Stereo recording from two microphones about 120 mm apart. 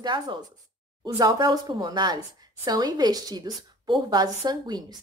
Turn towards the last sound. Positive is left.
turn(degrees=-35)  # may be behind; listen again after turning